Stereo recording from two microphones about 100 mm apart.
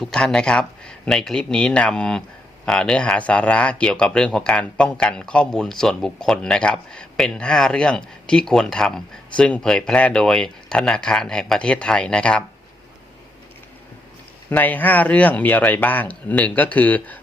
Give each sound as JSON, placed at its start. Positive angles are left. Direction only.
{"t": 0.0, "sound": "speech", "side_deg": 5}
{"t": 14.5, "sound": "speech", "side_deg": 15}